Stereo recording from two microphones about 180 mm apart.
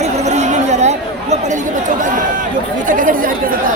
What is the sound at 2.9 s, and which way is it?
Speech, 50° right (ahead or behind).